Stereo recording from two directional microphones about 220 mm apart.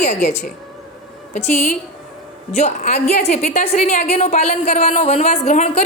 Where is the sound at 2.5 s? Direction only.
30° left (ahead or behind).